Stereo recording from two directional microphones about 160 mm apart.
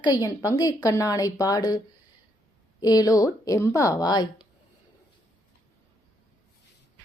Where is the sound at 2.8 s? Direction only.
25° left (ahead or behind).